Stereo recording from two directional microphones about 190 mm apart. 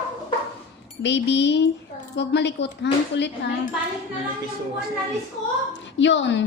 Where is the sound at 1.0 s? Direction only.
65° left (ahead or behind).